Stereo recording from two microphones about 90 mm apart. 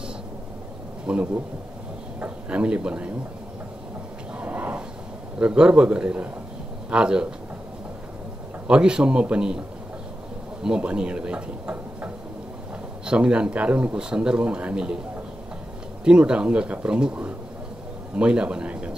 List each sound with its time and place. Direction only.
1.0 s speech: 15° right (ahead or behind)
4.4 s a sound: 15° right (ahead or behind)
5.4 s speech: 10° right (ahead or behind)
8.6 s speech: 10° right (ahead or behind)
10.6 s speech: 10° right (ahead or behind)
16.0 s a man's voice: 10° right (ahead or behind)